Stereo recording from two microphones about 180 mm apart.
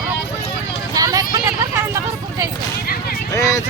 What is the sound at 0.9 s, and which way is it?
Vehicle, 20° right (ahead or behind).